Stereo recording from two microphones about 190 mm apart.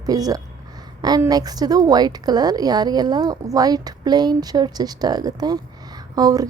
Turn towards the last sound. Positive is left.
turn(degrees=-20)  # may be behind; listen again after turning